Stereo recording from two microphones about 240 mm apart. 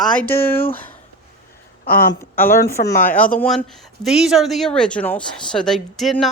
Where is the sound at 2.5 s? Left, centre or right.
Left.